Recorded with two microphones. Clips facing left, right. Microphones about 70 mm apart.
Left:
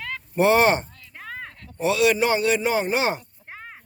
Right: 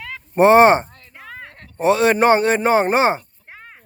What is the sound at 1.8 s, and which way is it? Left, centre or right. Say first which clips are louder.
A man's voice: right 5 dB; right.